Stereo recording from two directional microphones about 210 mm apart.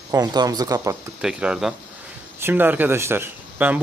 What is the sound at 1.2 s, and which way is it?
Speech, 5° right (ahead or behind).